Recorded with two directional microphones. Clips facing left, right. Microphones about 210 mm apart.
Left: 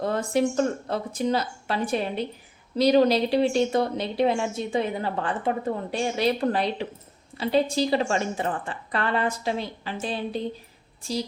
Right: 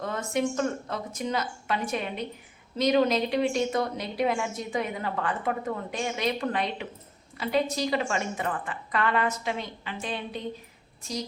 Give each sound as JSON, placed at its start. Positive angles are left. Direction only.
{"t": 0.0, "sound": "speech", "side_deg": 35}